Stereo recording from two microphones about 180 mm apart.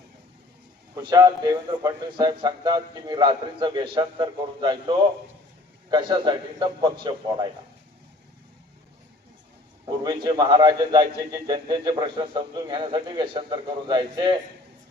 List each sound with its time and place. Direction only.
0.9 s a man's voice: 20° right (ahead or behind)
9.8 s a man's voice: 25° right (ahead or behind)